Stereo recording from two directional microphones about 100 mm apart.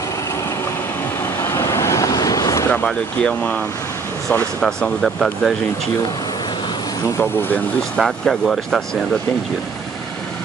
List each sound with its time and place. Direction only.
1.4 s vehicle: 25° left (ahead or behind)
2.7 s speech: 10° left (ahead or behind)
7.9 s speech: 5° left (ahead or behind)